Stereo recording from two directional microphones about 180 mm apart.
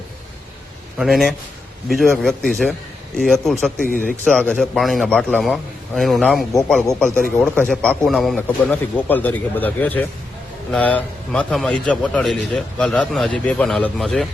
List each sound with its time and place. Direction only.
0.9 s a man's voice: centre (ahead or behind)
3.8 s speech: 50° left (ahead or behind)
4.2 s a man's voice: 5° left (ahead or behind)